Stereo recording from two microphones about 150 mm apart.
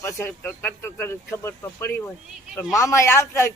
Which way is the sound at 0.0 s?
20° left (ahead or behind).